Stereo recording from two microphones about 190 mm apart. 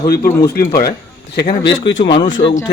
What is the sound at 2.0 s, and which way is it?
Speech, 25° left (ahead or behind).